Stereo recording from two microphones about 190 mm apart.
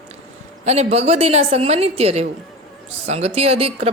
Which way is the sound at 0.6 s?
35° right (ahead or behind).